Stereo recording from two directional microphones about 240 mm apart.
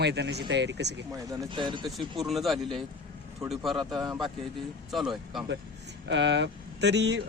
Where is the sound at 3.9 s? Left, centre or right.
Centre.